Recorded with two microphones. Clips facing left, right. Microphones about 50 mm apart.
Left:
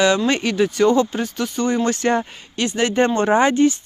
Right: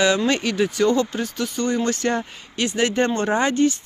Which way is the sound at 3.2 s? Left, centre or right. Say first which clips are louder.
Left 5 dB; left.